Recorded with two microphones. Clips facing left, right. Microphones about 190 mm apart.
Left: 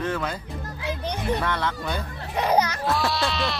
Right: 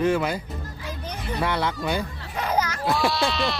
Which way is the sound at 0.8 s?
70° left (ahead or behind).